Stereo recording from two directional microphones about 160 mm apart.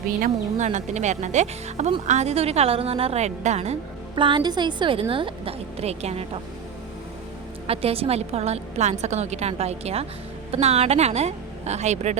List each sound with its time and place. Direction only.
0.2 s speech: 50° right (ahead or behind)
4.1 s a woman's voice: 30° right (ahead or behind)
7.7 s a woman's voice: 40° right (ahead or behind)